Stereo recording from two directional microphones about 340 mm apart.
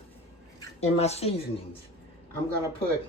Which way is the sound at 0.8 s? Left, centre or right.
Centre.